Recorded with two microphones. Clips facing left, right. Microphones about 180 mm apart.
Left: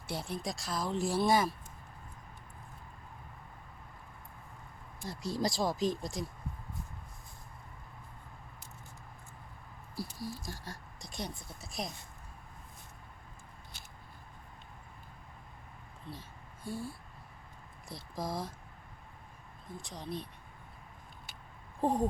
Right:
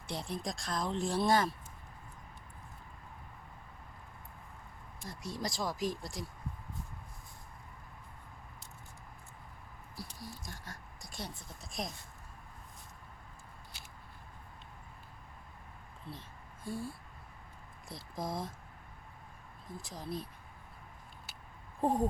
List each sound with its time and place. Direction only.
0.1 s speech: centre (ahead or behind)
5.0 s speech: 30° left (ahead or behind)
10.4 s speech: 30° left (ahead or behind)
11.1 s speech: 15° left (ahead or behind)
11.6 s speech: centre (ahead or behind)
16.1 s speech: 5° right (ahead or behind)
19.6 s speech: centre (ahead or behind)
21.8 s speech: centre (ahead or behind)